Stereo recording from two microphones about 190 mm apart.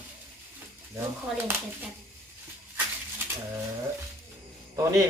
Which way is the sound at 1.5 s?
10° right (ahead or behind).